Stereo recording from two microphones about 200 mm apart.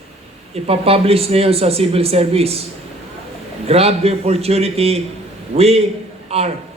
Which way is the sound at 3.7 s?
30° right (ahead or behind).